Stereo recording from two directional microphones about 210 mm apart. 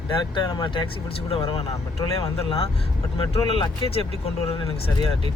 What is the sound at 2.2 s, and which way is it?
Speech, 25° left (ahead or behind).